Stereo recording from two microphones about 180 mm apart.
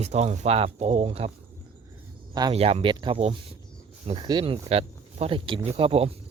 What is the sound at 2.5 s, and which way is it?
Speech, 35° right (ahead or behind).